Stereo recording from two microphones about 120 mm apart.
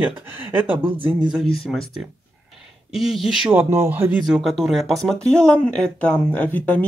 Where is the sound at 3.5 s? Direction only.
20° right (ahead or behind).